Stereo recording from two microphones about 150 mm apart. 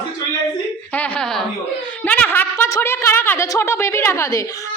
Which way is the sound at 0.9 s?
5° left (ahead or behind).